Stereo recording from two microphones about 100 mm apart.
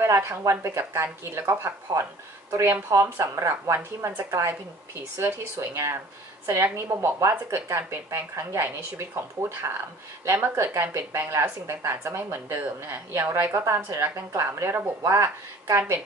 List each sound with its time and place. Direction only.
0.0 s speech: 25° right (ahead or behind)
10.2 s speech: 25° right (ahead or behind)